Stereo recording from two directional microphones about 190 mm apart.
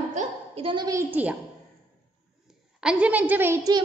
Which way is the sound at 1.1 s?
10° right (ahead or behind).